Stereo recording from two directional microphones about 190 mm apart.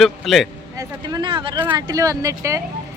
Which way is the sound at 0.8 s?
20° right (ahead or behind).